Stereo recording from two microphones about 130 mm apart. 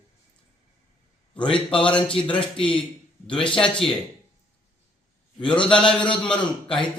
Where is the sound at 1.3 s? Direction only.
40° left (ahead or behind).